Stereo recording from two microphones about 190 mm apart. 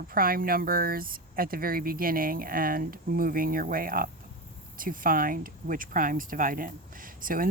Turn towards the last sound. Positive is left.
turn(degrees=-45)  # may be behind; listen again after turning